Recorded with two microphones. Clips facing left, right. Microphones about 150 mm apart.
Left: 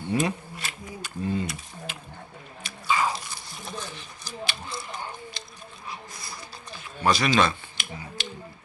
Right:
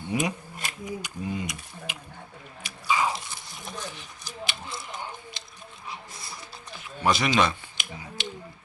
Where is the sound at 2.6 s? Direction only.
15° right (ahead or behind).